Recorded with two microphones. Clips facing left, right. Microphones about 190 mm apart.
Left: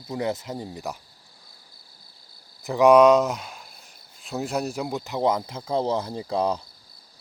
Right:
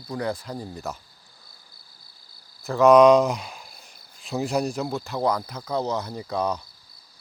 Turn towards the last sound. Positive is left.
turn(degrees=30)  # may be behind; listen again after turning